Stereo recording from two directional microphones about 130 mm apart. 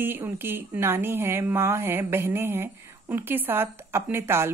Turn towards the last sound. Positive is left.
turn(degrees=-20)  # may be behind; listen again after turning